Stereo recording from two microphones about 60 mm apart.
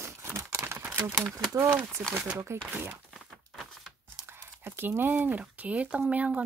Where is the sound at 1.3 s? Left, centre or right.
Right.